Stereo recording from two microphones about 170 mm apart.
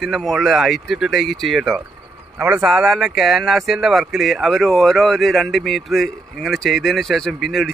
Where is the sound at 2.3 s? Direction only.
15° right (ahead or behind).